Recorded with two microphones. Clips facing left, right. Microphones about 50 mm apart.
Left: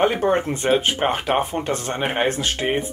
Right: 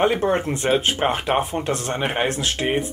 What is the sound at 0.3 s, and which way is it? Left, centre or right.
Speech, centre.